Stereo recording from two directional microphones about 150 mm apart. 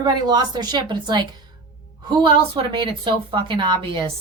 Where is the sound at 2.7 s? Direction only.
30° right (ahead or behind).